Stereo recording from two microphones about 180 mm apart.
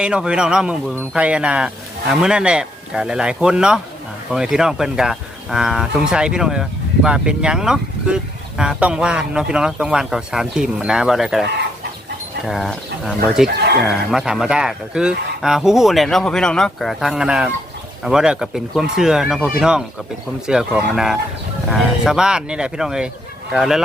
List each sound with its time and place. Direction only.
0.0 s speech: 5° right (ahead or behind)
12.5 s speech: centre (ahead or behind)
13.5 s speech: 65° right (ahead or behind)
13.8 s speech: centre (ahead or behind)